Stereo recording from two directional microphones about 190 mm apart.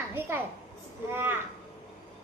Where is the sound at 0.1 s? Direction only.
10° right (ahead or behind).